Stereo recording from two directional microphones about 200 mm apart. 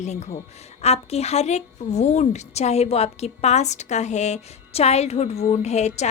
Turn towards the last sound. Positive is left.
turn(degrees=35)  # may be behind; listen again after turning